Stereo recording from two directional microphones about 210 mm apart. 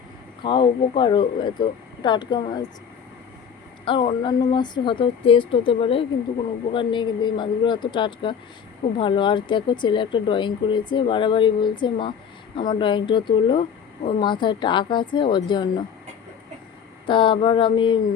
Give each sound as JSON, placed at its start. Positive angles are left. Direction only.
{"t": 0.4, "sound": "speech", "side_deg": 20}
{"t": 3.8, "sound": "speech", "side_deg": 25}
{"t": 17.1, "sound": "speech", "side_deg": 25}